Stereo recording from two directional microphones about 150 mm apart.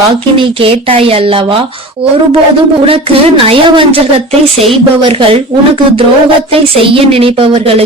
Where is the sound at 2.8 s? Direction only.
40° right (ahead or behind).